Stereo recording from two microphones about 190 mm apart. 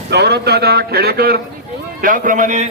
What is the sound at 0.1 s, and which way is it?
A man's voice, 60° right (ahead or behind).